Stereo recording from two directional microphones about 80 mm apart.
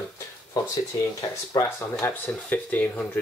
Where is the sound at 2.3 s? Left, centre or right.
Left.